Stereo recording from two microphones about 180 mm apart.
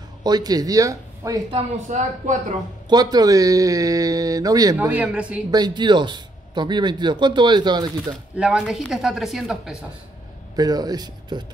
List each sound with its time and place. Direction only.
0.2 s speech: 20° right (ahead or behind)
1.9 s speech: 40° right (ahead or behind)
2.9 s speech: 20° right (ahead or behind)
4.7 s speech: 10° right (ahead or behind)
5.5 s speech: 25° right (ahead or behind)
8.4 s speech: 5° right (ahead or behind)
10.5 s speech: 20° right (ahead or behind)